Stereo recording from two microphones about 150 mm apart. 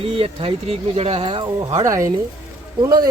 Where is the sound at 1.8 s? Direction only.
20° right (ahead or behind).